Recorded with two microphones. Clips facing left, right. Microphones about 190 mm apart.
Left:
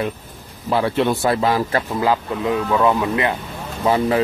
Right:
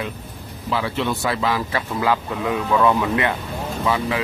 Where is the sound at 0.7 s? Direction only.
50° left (ahead or behind).